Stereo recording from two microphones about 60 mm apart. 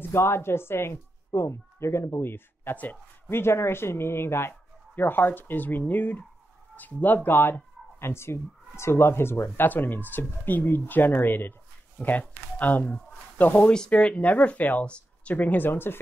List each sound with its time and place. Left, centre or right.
0.0 s speech: left
14.9 s a sound: centre
15.3 s speech: left